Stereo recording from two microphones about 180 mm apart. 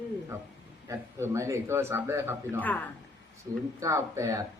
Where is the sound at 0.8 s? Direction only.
15° right (ahead or behind).